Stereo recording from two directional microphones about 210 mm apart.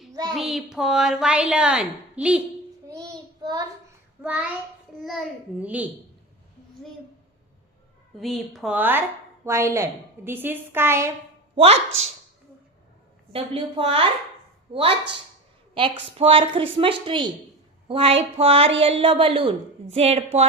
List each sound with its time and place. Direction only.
0.1 s a sound: 20° right (ahead or behind)
0.3 s a woman's voice: centre (ahead or behind)
2.9 s child singing: 20° right (ahead or behind)
4.2 s a child's voice: 5° right (ahead or behind)
8.2 s speech: centre (ahead or behind)
11.5 s speech: 30° right (ahead or behind)
13.3 s a woman's voice: 25° right (ahead or behind)